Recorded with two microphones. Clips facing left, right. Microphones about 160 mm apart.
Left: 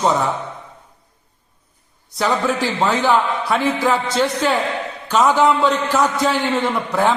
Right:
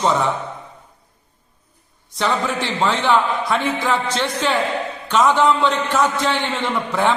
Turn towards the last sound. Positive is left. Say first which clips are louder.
# left 1 dB
turn(degrees=10)  # may be behind; listen again after turning